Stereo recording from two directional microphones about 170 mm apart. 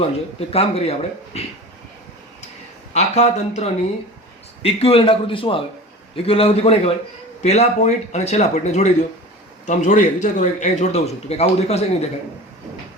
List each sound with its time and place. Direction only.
0.0 s speech: 35° left (ahead or behind)
2.9 s a man's voice: 40° left (ahead or behind)